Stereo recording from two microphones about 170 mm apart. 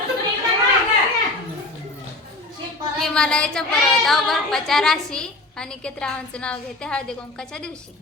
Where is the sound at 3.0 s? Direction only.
5° left (ahead or behind).